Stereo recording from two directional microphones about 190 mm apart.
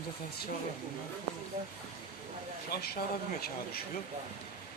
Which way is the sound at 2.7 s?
55° left (ahead or behind).